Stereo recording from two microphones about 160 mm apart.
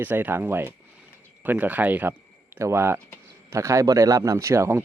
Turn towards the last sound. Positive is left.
turn(degrees=-15)  # may be behind; listen again after turning